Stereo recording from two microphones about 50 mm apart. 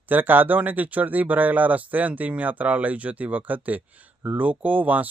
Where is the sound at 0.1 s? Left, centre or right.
Right.